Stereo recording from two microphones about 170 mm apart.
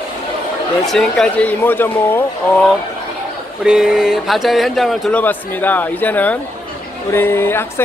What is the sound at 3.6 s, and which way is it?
Speech, 5° right (ahead or behind).